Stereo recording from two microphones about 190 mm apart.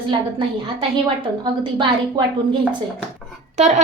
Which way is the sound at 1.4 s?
25° right (ahead or behind).